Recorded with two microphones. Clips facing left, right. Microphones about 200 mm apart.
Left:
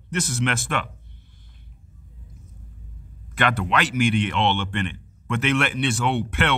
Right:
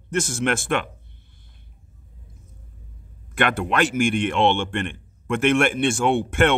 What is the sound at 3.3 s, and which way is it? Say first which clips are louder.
A man's voice: right 2 dB; 50° right (ahead or behind).